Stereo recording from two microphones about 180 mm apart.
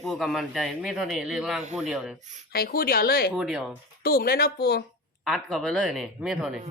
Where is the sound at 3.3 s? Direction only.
5° right (ahead or behind).